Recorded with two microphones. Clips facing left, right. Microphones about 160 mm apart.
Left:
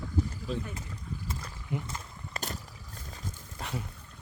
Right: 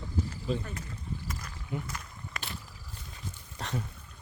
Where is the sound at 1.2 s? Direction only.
25° left (ahead or behind).